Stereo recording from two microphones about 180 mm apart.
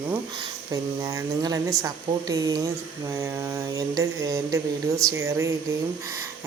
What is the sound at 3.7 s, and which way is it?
Speech, 20° right (ahead or behind).